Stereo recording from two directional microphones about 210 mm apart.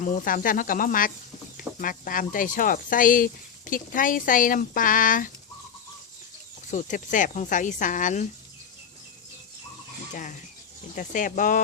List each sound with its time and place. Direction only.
0.0 s speech: 40° left (ahead or behind)
6.7 s speech: 35° left (ahead or behind)
10.9 s speech: 40° left (ahead or behind)